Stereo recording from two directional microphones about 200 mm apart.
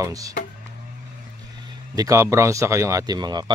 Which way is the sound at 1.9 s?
15° right (ahead or behind).